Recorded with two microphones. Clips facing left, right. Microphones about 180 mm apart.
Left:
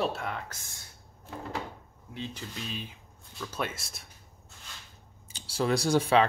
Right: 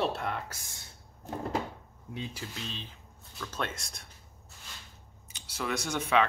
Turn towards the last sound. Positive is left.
turn(degrees=35)  # may be behind; listen again after turning